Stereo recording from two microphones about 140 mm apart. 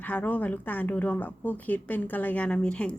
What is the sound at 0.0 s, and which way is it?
A woman's voice, 10° left (ahead or behind).